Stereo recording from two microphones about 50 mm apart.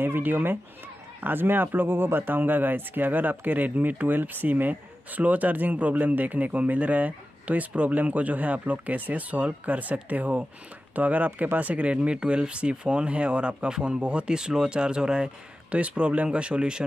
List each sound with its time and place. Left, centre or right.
0.0 s speech: right; by 16.8 s centre